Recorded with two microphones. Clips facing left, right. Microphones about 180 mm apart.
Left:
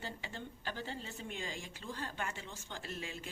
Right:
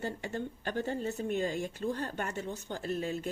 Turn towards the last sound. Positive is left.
turn(degrees=-40)  # may be behind; listen again after turning